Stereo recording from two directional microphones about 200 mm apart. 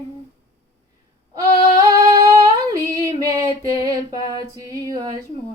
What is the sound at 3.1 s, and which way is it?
Female singing, 15° right (ahead or behind).